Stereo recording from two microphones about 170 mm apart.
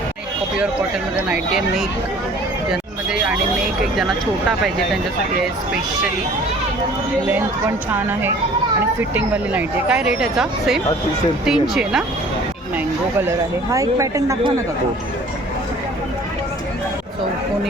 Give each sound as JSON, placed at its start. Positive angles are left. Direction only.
{"t": 1.1, "sound": "speech", "side_deg": -5}
{"t": 2.6, "sound": "a sound", "side_deg": -5}
{"t": 3.8, "sound": "speech", "side_deg": 0}
{"t": 9.1, "sound": "speech", "side_deg": -10}
{"t": 13.2, "sound": "speech", "side_deg": -20}